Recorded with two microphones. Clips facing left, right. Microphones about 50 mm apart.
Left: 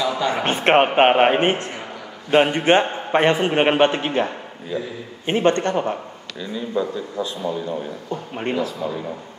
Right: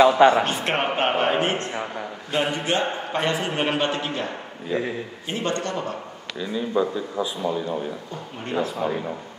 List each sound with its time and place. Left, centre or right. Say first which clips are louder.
0.0 s a sound: right 8 dB; right
0.3 s a man's voice: left 3 dB; left
4.7 s speech: right 1 dB; right
5.2 s a man's voice: left 9 dB; left
6.4 s speech: right 1 dB; centre
8.5 s speech: right 5 dB; right